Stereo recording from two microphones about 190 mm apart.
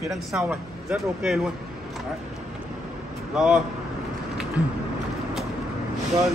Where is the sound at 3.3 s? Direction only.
5° right (ahead or behind).